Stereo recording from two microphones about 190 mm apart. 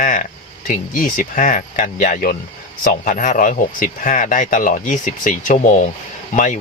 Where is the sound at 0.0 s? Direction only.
45° left (ahead or behind).